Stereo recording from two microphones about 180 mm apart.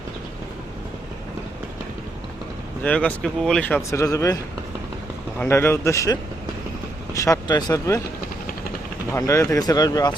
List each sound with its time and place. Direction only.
2.8 s speech: 5° left (ahead or behind)
3.8 s speech: 15° left (ahead or behind)
5.4 s speech: 15° left (ahead or behind)
9.1 s speech: 15° left (ahead or behind)